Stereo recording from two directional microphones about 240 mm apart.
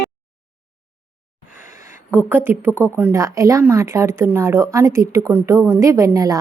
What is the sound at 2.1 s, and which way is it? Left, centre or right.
Speech, centre.